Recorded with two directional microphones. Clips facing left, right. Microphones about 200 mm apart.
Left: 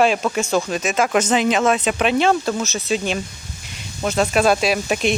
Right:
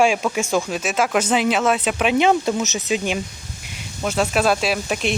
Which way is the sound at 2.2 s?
15° right (ahead or behind).